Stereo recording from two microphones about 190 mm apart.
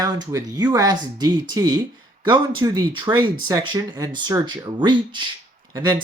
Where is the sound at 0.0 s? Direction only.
20° right (ahead or behind).